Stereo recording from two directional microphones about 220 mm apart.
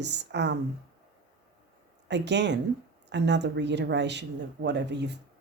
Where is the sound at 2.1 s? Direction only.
50° right (ahead or behind).